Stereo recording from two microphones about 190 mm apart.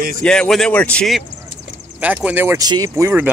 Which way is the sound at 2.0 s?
10° right (ahead or behind).